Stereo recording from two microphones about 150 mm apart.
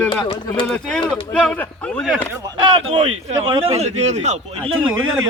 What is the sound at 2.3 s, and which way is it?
Speech, 20° right (ahead or behind).